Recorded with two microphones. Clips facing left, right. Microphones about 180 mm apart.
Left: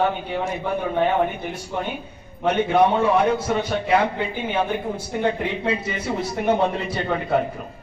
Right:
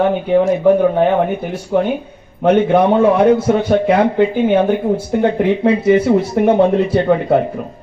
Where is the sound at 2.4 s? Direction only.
55° right (ahead or behind).